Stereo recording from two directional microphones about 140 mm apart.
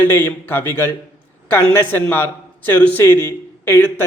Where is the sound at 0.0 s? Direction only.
15° left (ahead or behind).